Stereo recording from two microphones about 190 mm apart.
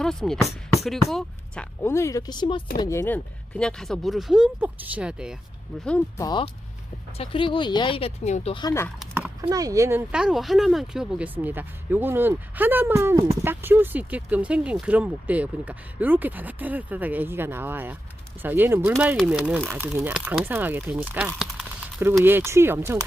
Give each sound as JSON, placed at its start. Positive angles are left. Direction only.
{"t": 0.0, "sound": "speech", "side_deg": 0}
{"t": 6.1, "sound": "speech", "side_deg": 20}
{"t": 8.5, "sound": "speech", "side_deg": 20}
{"t": 9.4, "sound": "speech", "side_deg": -20}